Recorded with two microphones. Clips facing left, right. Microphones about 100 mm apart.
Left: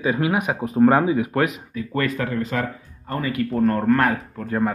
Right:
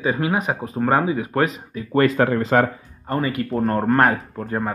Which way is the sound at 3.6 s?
30° right (ahead or behind).